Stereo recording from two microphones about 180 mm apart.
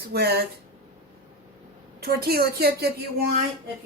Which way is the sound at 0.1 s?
60° right (ahead or behind).